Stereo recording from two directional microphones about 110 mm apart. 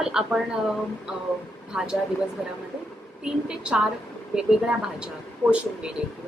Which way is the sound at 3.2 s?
10° right (ahead or behind).